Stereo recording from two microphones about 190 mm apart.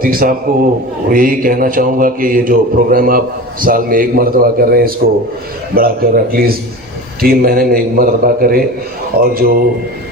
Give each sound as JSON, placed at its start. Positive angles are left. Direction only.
{"t": 0.0, "sound": "a man's voice", "side_deg": -50}